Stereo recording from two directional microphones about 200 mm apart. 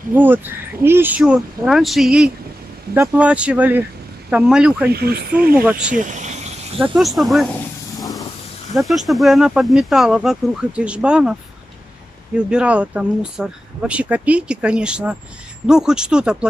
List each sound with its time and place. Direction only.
0.1 s speech: 10° right (ahead or behind)
4.9 s speech: 50° right (ahead or behind)
5.6 s speech: 5° right (ahead or behind)
6.0 s a sound: 35° right (ahead or behind)
6.8 s speech: centre (ahead or behind)
8.7 s speech: centre (ahead or behind)
12.4 s speech: 5° right (ahead or behind)